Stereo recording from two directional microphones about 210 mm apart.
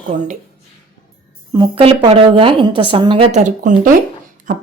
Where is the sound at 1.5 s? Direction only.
25° right (ahead or behind).